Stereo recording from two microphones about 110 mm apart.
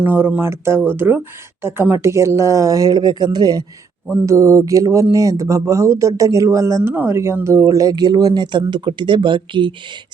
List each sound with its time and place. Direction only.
0.0 s speech: 15° right (ahead or behind); by 3.6 s 40° right (ahead or behind)
4.1 s speech: 25° right (ahead or behind); by 9.7 s 50° right (ahead or behind)